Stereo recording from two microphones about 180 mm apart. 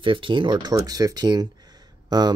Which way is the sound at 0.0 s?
30° right (ahead or behind).